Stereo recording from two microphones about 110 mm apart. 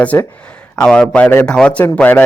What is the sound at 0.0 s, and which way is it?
Speech, 15° left (ahead or behind).